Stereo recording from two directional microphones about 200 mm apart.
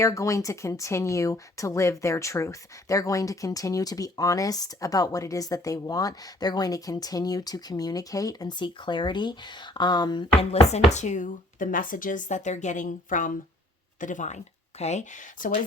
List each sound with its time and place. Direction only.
0.0 s speech: 15° left (ahead or behind)
10.5 s speech: 35° left (ahead or behind)